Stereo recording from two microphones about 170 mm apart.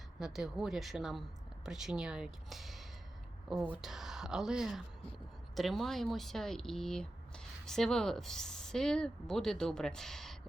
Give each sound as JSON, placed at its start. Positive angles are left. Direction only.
{"t": 0.2, "sound": "speech", "side_deg": 0}